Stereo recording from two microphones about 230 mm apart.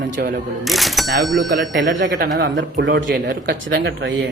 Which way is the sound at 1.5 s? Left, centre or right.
Right.